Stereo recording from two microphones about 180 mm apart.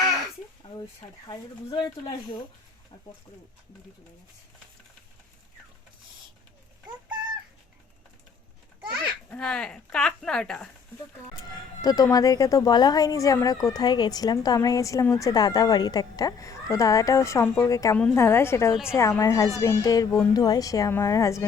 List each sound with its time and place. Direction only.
1.3 s speech: 25° left (ahead or behind)
9.3 s speech: 5° left (ahead or behind)
11.8 s speech: 20° left (ahead or behind)
18.7 s speech: 5° right (ahead or behind)
18.9 s speech: 15° left (ahead or behind)